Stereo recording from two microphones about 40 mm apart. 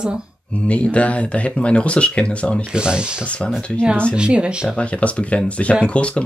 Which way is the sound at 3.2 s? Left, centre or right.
Left.